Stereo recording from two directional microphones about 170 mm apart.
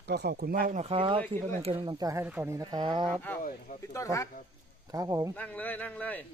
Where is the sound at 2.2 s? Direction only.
10° right (ahead or behind); by 3.1 s 25° right (ahead or behind).